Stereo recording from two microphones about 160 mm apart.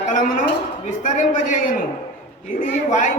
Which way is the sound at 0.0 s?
50° left (ahead or behind).